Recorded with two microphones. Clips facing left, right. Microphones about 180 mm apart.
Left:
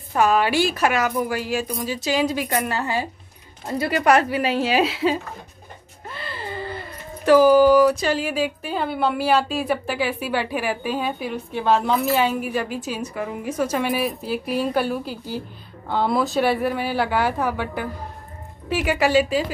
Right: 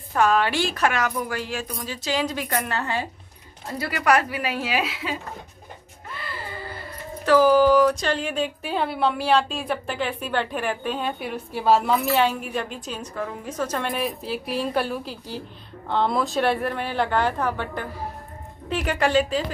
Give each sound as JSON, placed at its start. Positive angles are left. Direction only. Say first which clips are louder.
{"t": 0.1, "sound": "a woman's voice", "louder": "left 2 dB", "side_deg": 10}
{"t": 3.6, "sound": "a woman's voice", "louder": "left 4 dB", "side_deg": 20}